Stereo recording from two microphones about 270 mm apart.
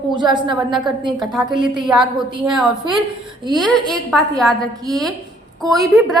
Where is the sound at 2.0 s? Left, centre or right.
Centre.